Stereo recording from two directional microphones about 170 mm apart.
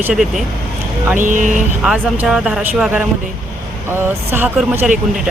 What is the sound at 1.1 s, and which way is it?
Speech, 50° right (ahead or behind).